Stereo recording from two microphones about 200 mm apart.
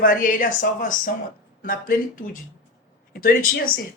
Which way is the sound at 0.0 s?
45° left (ahead or behind).